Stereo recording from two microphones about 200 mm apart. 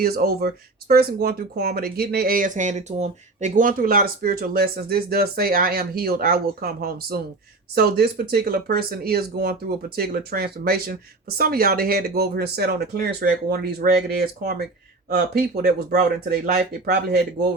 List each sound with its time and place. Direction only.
0.0 s speech: 50° right (ahead or behind)